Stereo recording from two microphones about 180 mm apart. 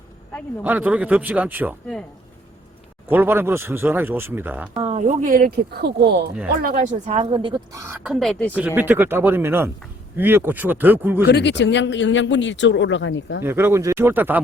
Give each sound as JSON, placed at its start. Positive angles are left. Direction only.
{"t": 0.6, "sound": "speech", "side_deg": -10}
{"t": 3.1, "sound": "speech", "side_deg": -10}
{"t": 4.7, "sound": "a sound", "side_deg": -30}
{"t": 5.0, "sound": "speech", "side_deg": -50}
{"t": 6.9, "sound": "speech", "side_deg": -35}
{"t": 8.0, "sound": "speech", "side_deg": 0}
{"t": 8.5, "sound": "speech", "side_deg": -10}
{"t": 11.3, "sound": "speech", "side_deg": 75}
{"t": 13.4, "sound": "speech", "side_deg": -10}